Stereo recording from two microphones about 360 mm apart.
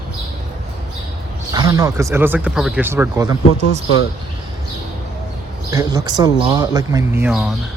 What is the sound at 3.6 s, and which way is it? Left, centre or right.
Speech, left.